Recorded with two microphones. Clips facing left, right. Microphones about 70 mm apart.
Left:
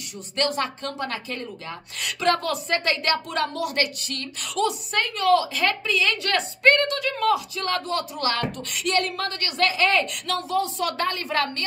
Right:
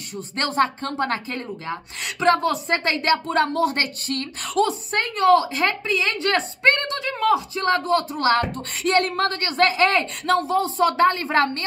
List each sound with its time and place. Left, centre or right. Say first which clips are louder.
0.4 s a woman's voice: right 4 dB; right